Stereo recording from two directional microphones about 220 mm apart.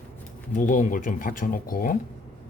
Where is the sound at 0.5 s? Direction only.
35° left (ahead or behind).